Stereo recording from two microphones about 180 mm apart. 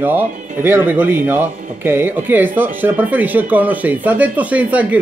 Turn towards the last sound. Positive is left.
turn(degrees=-10)  # may be behind; listen again after turning